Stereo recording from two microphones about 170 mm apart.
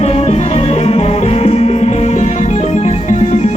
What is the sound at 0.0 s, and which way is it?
Music, 35° left (ahead or behind).